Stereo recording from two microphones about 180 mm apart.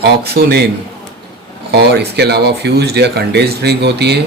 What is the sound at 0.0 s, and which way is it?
Speech, 60° right (ahead or behind).